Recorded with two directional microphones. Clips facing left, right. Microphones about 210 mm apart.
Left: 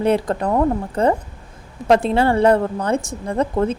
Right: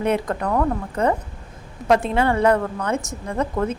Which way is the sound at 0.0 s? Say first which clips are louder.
Left 4 dB; 30° left (ahead or behind).